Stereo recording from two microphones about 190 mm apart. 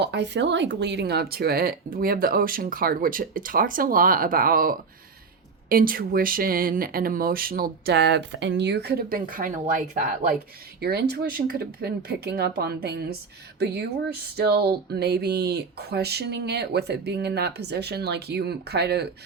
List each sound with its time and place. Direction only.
0.0 s speech: 65° right (ahead or behind); by 10.2 s 45° right (ahead or behind)
10.8 s speech: 55° right (ahead or behind)
14.3 s speech: 55° right (ahead or behind)